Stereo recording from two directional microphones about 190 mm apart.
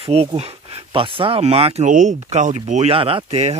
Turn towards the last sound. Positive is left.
turn(degrees=-35)  # may be behind; listen again after turning